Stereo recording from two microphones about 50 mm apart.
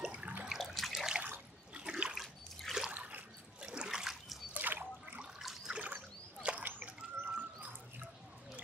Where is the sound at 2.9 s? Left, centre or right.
Right.